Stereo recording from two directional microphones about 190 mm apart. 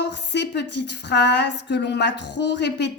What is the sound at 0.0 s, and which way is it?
A woman's voice, 65° left (ahead or behind).